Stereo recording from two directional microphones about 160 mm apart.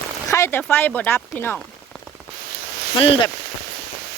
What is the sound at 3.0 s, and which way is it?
Speech, 35° left (ahead or behind).